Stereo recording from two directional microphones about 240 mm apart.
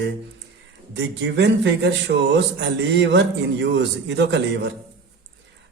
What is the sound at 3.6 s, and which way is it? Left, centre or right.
Speech, right.